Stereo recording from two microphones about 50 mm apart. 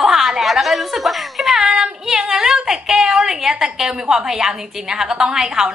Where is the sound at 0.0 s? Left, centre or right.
Centre.